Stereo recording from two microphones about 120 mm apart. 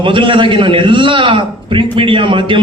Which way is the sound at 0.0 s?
45° right (ahead or behind).